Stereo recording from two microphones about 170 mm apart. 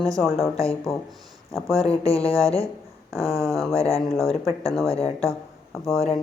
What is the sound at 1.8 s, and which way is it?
Speech, 35° left (ahead or behind).